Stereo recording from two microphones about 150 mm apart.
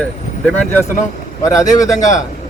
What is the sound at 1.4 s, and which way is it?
Speech, 20° left (ahead or behind).